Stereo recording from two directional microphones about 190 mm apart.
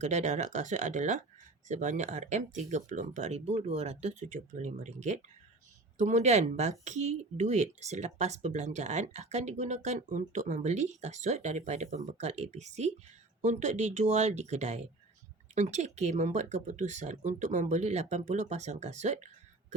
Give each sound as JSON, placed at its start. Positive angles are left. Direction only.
{"t": 0.0, "sound": "speech", "side_deg": -40}